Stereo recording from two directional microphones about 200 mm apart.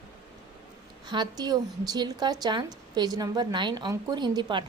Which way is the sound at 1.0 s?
20° right (ahead or behind).